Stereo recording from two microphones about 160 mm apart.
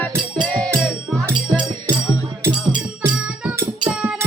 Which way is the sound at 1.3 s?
30° right (ahead or behind).